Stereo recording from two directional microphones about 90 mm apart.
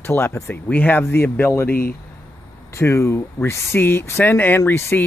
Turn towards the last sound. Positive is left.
turn(degrees=25)  # may be behind; listen again after turning